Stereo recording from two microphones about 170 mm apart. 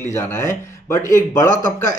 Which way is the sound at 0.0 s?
15° left (ahead or behind).